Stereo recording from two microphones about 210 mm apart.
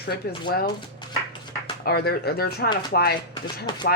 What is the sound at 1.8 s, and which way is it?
A woman's voice, 50° left (ahead or behind).